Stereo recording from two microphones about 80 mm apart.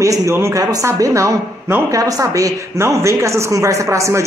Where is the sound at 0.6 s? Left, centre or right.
Right.